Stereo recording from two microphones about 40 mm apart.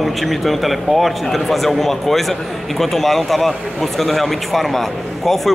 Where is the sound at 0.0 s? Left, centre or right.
Centre.